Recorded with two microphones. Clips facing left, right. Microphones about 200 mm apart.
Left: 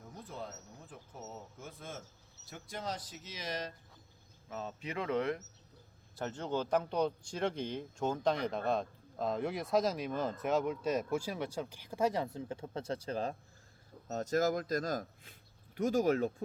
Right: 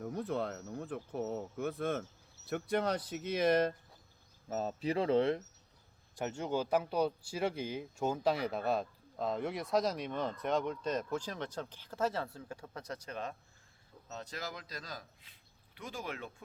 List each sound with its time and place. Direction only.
0.0 s speech: 65° right (ahead or behind)
4.4 s speech: 40° right (ahead or behind)
6.1 s speech: 15° right (ahead or behind); by 13.3 s 30° left (ahead or behind)
14.1 s speech: 45° left (ahead or behind)